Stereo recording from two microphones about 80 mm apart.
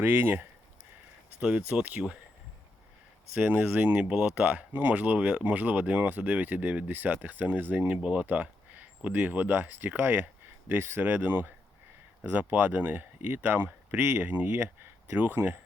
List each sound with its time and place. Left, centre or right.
0.0 s speech: right
1.4 s speech: centre
3.3 s speech: right